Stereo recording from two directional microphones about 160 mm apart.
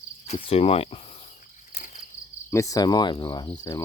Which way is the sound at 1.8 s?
55° left (ahead or behind).